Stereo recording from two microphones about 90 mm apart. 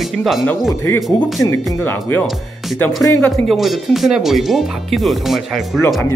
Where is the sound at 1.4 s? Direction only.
30° left (ahead or behind).